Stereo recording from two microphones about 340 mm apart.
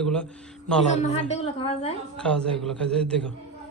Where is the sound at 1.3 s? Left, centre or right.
Centre.